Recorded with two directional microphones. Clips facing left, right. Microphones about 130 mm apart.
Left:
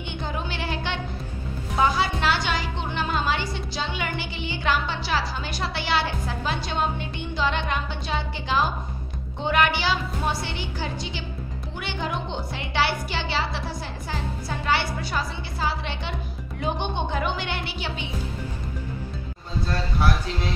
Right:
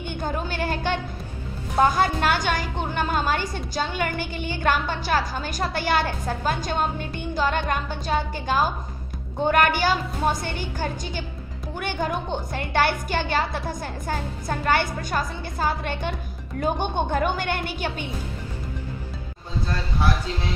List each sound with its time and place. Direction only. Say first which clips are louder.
0.0 s a woman's voice: right 3 dB; 45° right (ahead or behind)